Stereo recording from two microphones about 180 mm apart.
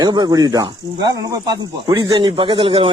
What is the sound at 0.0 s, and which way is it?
A man's voice, 25° right (ahead or behind).